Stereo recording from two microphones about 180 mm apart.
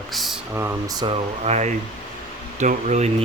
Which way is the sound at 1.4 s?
40° right (ahead or behind).